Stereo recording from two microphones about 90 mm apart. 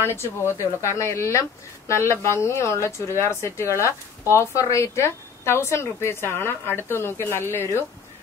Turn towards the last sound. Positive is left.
turn(degrees=25)  # may be behind; listen again after turning